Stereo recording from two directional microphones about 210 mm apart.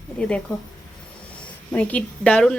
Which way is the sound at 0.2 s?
5° left (ahead or behind).